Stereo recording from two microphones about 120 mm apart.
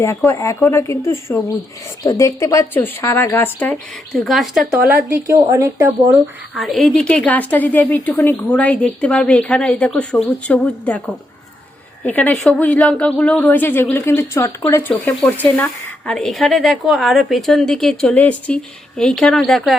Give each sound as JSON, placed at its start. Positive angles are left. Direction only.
{"t": 0.3, "sound": "speech", "side_deg": 25}
{"t": 4.1, "sound": "speech", "side_deg": 0}
{"t": 4.9, "sound": "a woman's voice", "side_deg": -25}
{"t": 6.5, "sound": "a woman's voice", "side_deg": 0}